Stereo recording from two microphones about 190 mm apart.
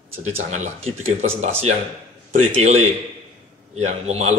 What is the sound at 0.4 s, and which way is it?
A man's voice, 40° right (ahead or behind).